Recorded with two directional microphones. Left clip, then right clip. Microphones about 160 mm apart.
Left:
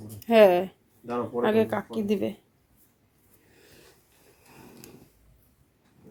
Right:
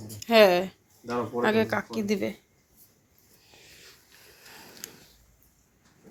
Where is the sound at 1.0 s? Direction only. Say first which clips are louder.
Even; 10° left (ahead or behind).